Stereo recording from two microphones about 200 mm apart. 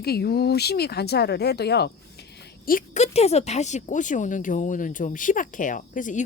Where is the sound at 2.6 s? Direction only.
40° left (ahead or behind).